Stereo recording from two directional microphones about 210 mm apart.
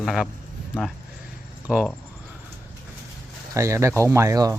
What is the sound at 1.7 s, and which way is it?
Speech, 5° right (ahead or behind).